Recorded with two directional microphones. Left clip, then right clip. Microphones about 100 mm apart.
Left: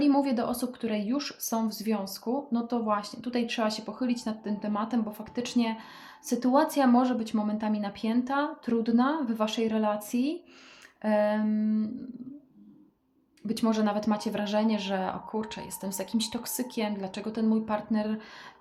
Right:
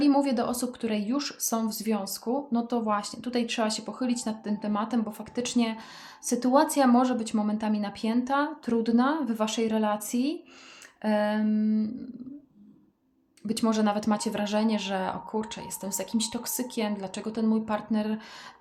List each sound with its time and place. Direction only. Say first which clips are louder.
0.0 s speech: right 1 dB; 20° right (ahead or behind)
13.5 s speech: right 2 dB; 25° right (ahead or behind)